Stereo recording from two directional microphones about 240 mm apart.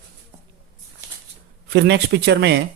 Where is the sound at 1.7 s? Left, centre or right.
Right.